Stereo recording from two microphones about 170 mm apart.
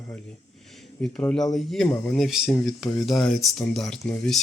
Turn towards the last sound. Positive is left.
turn(degrees=5)  # may be behind; listen again after turning